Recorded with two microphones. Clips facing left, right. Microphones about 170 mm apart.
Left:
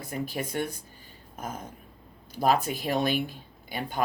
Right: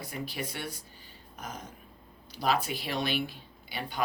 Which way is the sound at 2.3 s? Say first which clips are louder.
Left 5 dB; 50° left (ahead or behind).